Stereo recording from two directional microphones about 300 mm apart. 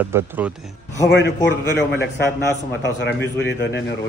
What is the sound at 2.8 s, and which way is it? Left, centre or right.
A man's voice, left.